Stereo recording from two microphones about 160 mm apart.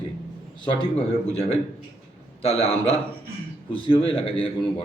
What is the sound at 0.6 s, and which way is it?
A man's voice, 35° left (ahead or behind).